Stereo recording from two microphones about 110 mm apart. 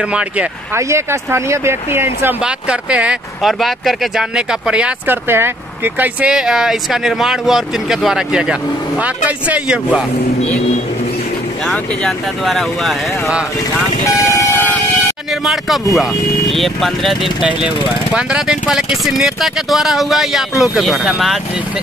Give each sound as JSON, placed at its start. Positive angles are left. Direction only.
{"t": 0.7, "sound": "speech", "side_deg": -25}
{"t": 2.4, "sound": "speech", "side_deg": -10}
{"t": 5.9, "sound": "speech", "side_deg": -10}
{"t": 11.6, "sound": "speech", "side_deg": 5}
{"t": 14.0, "sound": "vehicle", "side_deg": 25}
{"t": 15.4, "sound": "speech", "side_deg": 0}